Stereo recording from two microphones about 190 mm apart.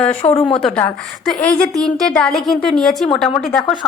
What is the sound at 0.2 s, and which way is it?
Speech, 25° left (ahead or behind).